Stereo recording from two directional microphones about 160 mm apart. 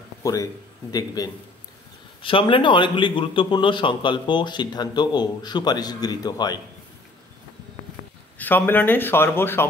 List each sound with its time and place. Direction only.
0.2 s a man's voice: 20° left (ahead or behind)
8.4 s speech: 10° left (ahead or behind)